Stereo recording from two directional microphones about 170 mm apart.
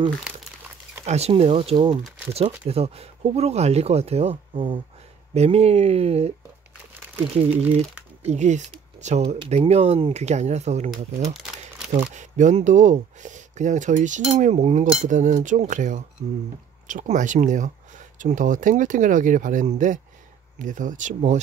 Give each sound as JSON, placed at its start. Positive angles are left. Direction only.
{"t": 1.0, "sound": "speech", "side_deg": -40}
{"t": 8.2, "sound": "speech", "side_deg": -40}
{"t": 11.9, "sound": "speech", "side_deg": -45}